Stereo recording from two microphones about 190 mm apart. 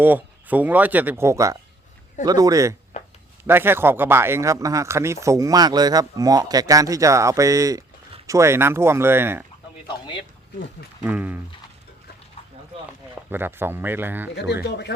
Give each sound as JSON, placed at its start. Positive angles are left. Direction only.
{"t": 0.0, "sound": "speech", "side_deg": -10}
{"t": 9.8, "sound": "speech", "side_deg": 25}
{"t": 11.0, "sound": "speech", "side_deg": -10}
{"t": 13.3, "sound": "speech", "side_deg": -10}
{"t": 14.5, "sound": "speech", "side_deg": 65}